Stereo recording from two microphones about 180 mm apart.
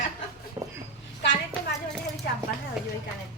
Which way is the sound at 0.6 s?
15° right (ahead or behind).